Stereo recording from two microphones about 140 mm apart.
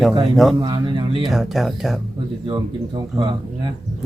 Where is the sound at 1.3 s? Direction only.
Centre (ahead or behind).